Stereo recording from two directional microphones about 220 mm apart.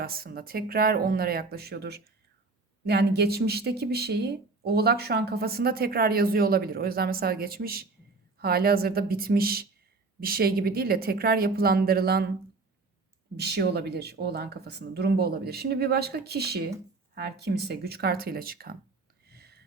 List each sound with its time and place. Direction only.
0.0 s speech: 45° right (ahead or behind)
13.4 s speech: 45° right (ahead or behind)
19.3 s whispering: 45° right (ahead or behind)